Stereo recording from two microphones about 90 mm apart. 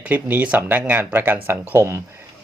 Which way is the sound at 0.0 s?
20° right (ahead or behind).